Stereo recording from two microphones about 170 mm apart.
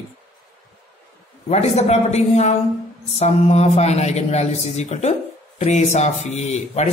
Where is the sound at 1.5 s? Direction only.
40° left (ahead or behind).